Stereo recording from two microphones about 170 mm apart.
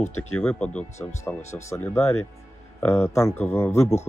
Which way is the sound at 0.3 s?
5° left (ahead or behind).